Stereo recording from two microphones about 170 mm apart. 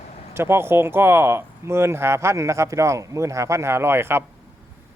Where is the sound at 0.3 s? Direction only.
15° right (ahead or behind).